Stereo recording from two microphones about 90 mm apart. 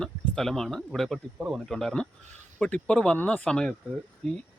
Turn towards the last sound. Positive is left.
turn(degrees=0)  # may be behind; listen again after turning